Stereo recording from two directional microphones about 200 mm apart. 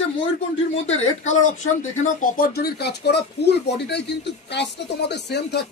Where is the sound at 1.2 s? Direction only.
35° left (ahead or behind).